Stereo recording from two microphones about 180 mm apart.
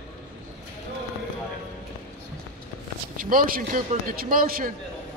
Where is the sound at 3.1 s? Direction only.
55° right (ahead or behind).